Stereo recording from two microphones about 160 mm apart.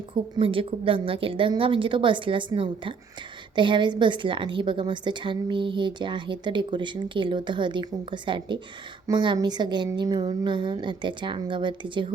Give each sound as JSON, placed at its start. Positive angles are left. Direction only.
{"t": 0.3, "sound": "a woman's voice", "side_deg": -35}